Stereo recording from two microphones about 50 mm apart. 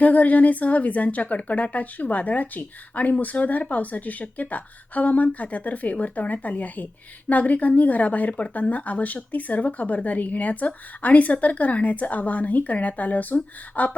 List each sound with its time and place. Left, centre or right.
0.0 s a woman's voice: left